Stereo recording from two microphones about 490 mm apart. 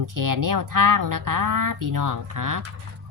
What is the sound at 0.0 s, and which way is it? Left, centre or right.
Speech, right.